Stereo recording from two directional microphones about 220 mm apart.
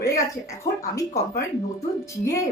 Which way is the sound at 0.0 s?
15° left (ahead or behind).